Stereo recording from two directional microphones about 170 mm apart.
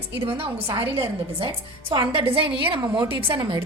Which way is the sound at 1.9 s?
30° right (ahead or behind).